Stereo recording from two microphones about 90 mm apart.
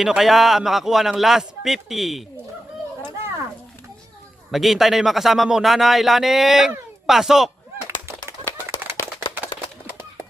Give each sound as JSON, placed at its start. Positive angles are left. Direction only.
{"t": 0.0, "sound": "a man's voice", "side_deg": -5}
{"t": 4.5, "sound": "a man's voice", "side_deg": 0}
{"t": 7.9, "sound": "a sound", "side_deg": -30}